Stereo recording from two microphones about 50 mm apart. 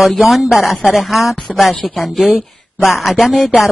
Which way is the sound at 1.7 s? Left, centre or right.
Centre.